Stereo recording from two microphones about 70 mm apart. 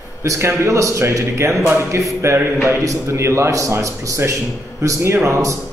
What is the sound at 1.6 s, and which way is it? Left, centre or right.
A man's voice, right.